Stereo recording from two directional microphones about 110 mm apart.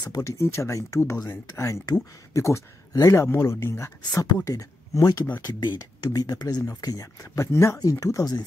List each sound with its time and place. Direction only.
0.0 s speech: 35° left (ahead or behind)
0.4 s speech: 25° left (ahead or behind)